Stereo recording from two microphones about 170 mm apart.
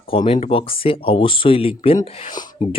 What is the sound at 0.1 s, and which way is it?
Speech, 35° left (ahead or behind).